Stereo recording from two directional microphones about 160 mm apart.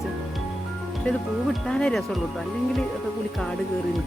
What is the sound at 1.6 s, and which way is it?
Speech, 5° left (ahead or behind).